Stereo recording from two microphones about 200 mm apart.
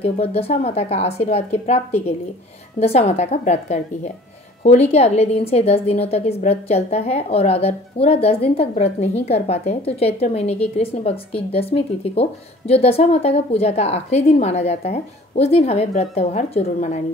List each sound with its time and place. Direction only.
0.0 s speech: 30° left (ahead or behind)